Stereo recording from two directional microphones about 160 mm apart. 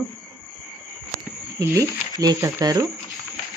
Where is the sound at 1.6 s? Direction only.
20° right (ahead or behind).